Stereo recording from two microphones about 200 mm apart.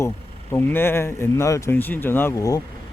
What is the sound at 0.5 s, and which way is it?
Speech, 10° left (ahead or behind).